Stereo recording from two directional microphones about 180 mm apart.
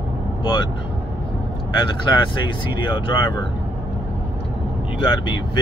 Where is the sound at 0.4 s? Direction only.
25° left (ahead or behind).